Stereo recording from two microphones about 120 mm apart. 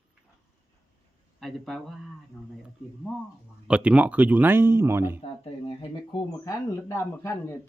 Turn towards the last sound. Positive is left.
turn(degrees=20)  # may be behind; listen again after turning